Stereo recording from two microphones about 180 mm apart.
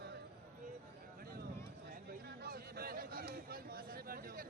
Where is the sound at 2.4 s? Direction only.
60° right (ahead or behind).